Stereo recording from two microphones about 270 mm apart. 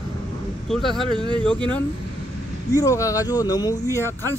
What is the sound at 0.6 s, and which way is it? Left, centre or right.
Speech, centre.